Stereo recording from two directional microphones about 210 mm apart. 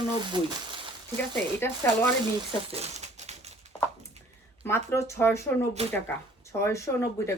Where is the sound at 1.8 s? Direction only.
10° left (ahead or behind).